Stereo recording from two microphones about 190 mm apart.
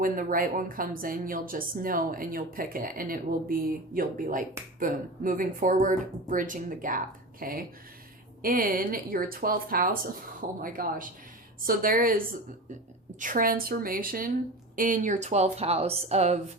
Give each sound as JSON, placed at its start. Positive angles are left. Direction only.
{"t": 0.0, "sound": "a woman's voice", "side_deg": -45}